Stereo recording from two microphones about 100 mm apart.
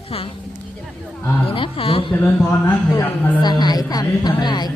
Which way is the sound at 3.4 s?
45° left (ahead or behind).